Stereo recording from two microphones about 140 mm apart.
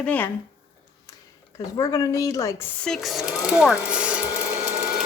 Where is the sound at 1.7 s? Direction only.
25° left (ahead or behind).